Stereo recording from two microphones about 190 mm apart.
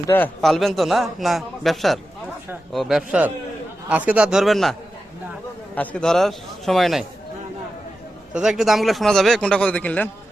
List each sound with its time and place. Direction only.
0.1 s a man's voice: 5° left (ahead or behind)
5.7 s a man's voice: 5° left (ahead or behind)
8.3 s a man's voice: 5° right (ahead or behind)